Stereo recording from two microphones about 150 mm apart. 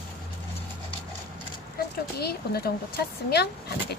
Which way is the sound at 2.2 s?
90° left.